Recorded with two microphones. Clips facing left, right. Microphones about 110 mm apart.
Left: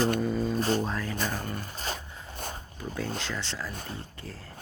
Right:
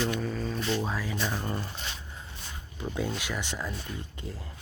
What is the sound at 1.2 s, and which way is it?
Speech, 45° left (ahead or behind).